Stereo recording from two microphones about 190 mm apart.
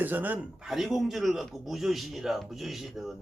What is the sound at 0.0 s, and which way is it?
Speech, 10° right (ahead or behind).